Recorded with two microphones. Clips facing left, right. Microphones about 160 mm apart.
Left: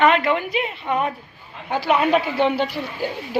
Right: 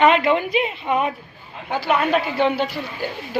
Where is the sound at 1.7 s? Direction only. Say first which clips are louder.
Left 1 dB; 5° left (ahead or behind).